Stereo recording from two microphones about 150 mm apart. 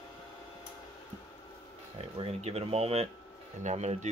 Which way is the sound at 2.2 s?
45° right (ahead or behind).